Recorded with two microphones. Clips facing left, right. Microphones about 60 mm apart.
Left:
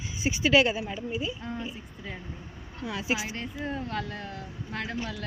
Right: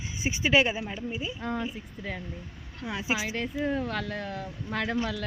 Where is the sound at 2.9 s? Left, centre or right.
Centre.